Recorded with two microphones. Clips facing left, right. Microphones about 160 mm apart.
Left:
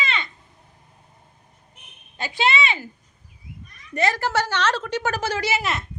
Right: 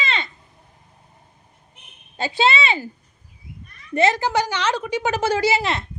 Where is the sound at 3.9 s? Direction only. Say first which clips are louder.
Right 4 dB; 25° right (ahead or behind).